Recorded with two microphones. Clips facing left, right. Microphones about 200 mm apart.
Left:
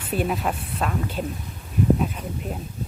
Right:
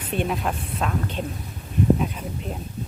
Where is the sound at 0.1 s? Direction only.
5° left (ahead or behind).